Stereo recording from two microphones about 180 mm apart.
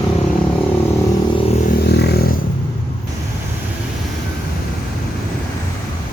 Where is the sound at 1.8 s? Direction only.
65° left (ahead or behind).